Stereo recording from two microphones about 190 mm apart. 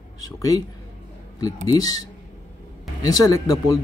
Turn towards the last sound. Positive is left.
turn(degrees=20)  # may be behind; listen again after turning